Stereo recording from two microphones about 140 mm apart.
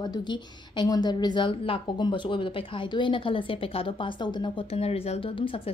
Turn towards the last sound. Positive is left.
turn(degrees=40)  # may be behind; listen again after turning